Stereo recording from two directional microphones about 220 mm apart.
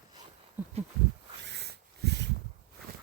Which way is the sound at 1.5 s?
50° right (ahead or behind).